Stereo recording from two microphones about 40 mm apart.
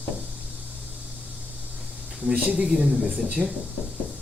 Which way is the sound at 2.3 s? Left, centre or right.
Right.